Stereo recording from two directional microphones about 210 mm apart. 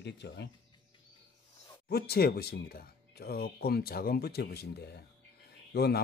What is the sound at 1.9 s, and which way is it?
Speech, 50° left (ahead or behind).